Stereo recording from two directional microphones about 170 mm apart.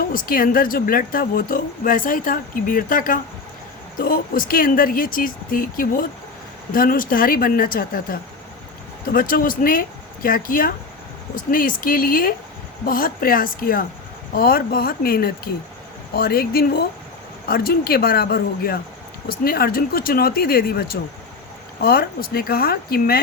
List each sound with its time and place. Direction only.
0.1 s a woman's voice: 55° left (ahead or behind)
9.1 s a woman's voice: 55° left (ahead or behind)